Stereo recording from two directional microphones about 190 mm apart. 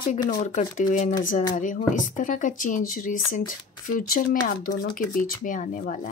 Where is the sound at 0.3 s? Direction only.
45° left (ahead or behind).